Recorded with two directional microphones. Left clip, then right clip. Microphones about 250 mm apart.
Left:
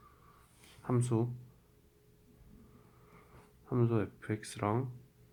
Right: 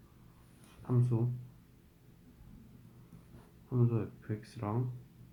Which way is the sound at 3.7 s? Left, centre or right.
Left.